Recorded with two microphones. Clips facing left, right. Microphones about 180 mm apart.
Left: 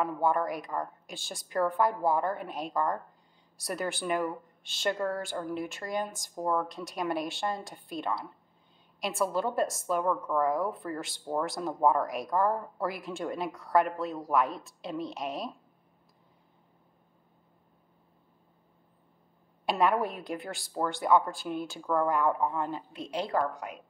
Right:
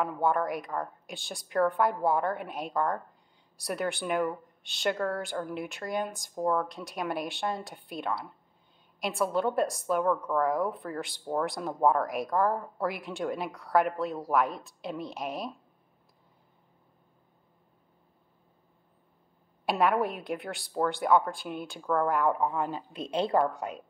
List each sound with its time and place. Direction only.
0.0 s a woman's voice: centre (ahead or behind)
19.6 s a woman's voice: centre (ahead or behind)
22.6 s a woman's voice: 20° right (ahead or behind)